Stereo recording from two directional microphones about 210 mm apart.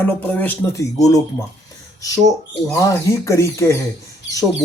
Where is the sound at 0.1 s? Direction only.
10° left (ahead or behind).